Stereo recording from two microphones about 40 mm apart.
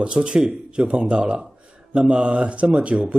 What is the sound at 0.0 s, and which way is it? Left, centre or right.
Speech, right.